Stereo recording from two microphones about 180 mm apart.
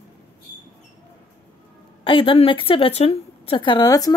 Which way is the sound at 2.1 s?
30° left (ahead or behind).